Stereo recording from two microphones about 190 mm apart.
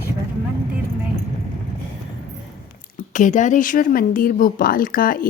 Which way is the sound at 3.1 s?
40° left (ahead or behind).